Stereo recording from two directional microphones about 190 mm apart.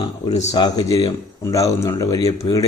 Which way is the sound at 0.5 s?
20° left (ahead or behind).